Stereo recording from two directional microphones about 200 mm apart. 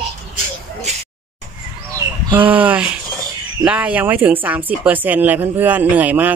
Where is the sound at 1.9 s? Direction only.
10° right (ahead or behind).